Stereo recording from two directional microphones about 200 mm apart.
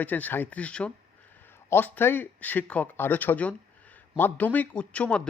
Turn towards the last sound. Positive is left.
turn(degrees=5)  # may be behind; listen again after turning